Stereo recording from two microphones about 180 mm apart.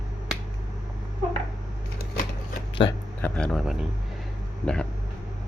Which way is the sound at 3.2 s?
5° left (ahead or behind).